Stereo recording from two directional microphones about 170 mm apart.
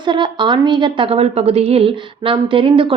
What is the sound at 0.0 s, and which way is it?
A woman's voice, 25° right (ahead or behind).